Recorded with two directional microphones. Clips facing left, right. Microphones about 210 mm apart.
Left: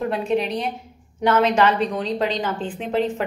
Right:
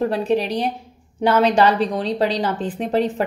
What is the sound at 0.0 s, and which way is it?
A woman's voice, 35° right (ahead or behind).